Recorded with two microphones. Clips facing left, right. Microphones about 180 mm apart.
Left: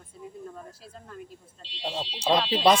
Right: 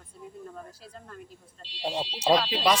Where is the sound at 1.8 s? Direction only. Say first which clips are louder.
Right 2 dB; 15° right (ahead or behind).